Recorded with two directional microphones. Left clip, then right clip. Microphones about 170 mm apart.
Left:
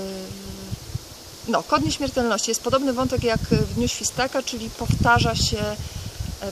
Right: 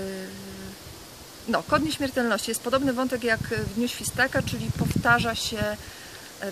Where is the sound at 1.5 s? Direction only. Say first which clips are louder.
Left 3 dB; 5° right (ahead or behind).